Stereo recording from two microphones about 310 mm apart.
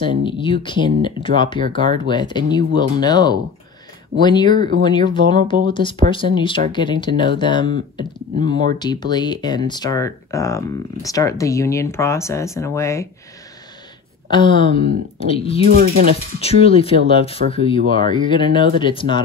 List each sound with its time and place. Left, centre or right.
0.0 s speech: centre
7.7 s speech: right
8.7 s speech: centre
14.3 s speech: centre
15.7 s speech: right
16.3 s speech: centre